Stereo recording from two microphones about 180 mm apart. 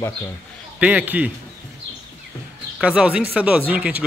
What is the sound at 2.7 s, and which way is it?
Speech, 5° right (ahead or behind).